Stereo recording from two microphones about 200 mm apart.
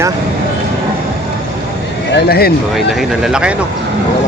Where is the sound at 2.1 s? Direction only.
50° left (ahead or behind).